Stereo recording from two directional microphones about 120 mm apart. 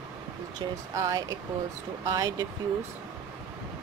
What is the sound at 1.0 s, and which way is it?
Speech, 30° right (ahead or behind).